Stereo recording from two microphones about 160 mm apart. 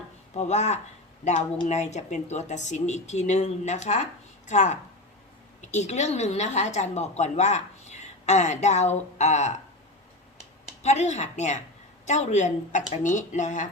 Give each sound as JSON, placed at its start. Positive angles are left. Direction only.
{"t": 0.3, "sound": "a woman's voice", "side_deg": 45}
{"t": 10.8, "sound": "a woman's voice", "side_deg": 45}